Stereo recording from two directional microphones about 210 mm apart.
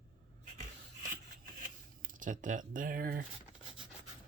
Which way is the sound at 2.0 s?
40° right (ahead or behind).